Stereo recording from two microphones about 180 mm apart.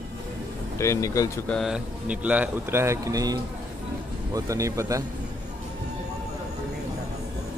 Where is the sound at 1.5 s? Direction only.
Centre (ahead or behind); by 5.0 s 15° right (ahead or behind).